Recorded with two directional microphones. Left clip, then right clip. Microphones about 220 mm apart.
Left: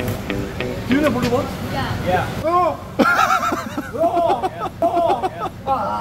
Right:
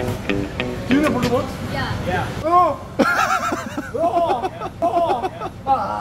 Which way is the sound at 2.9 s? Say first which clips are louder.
Left 3 dB; 5° left (ahead or behind).